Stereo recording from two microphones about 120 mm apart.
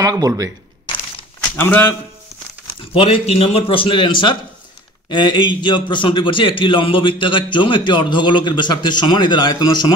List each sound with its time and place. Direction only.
0.0 s speech: 30° right (ahead or behind)
1.6 s a man's voice: 15° left (ahead or behind)
2.9 s a man's voice: 50° left (ahead or behind); by 9.9 s 35° left (ahead or behind)